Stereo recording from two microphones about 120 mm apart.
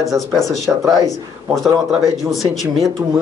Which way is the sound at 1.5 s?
30° right (ahead or behind).